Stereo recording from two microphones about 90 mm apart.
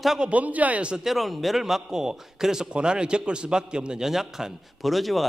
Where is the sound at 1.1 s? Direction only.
Centre (ahead or behind).